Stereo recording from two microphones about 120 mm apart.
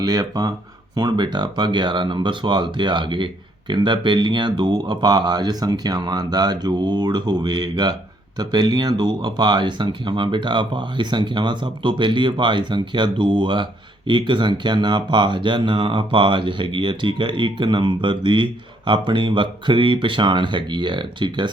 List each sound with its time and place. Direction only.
0.0 s speech: 35° right (ahead or behind)